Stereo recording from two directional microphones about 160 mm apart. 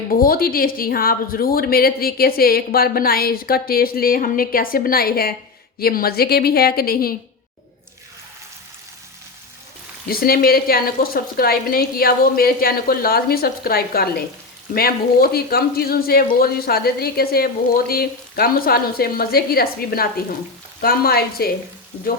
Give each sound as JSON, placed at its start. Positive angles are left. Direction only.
{"t": 0.1, "sound": "speech", "side_deg": 65}
{"t": 10.1, "sound": "speech", "side_deg": 70}